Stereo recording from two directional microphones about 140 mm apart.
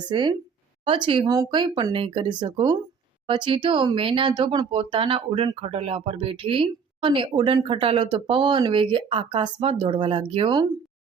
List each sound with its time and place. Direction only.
0.1 s speech: 35° right (ahead or behind)